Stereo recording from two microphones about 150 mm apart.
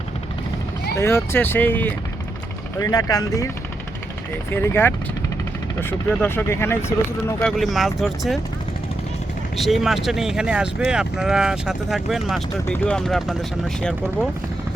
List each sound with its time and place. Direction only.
0.9 s speech: 15° left (ahead or behind)
2.7 s speech: 20° left (ahead or behind)
4.5 s speech: 15° left (ahead or behind)
6.2 s speech: 15° left (ahead or behind)
7.4 s speech: centre (ahead or behind)
9.6 s speech: centre (ahead or behind)